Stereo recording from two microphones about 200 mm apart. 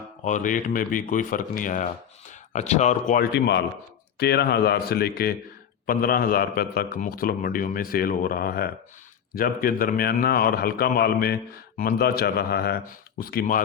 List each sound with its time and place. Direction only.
0.3 s speech: 40° left (ahead or behind)
3.3 s a man's voice: 60° left (ahead or behind)